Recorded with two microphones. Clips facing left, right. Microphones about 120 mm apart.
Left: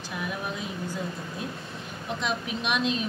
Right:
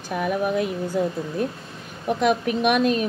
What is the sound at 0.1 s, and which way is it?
Speech, 50° right (ahead or behind).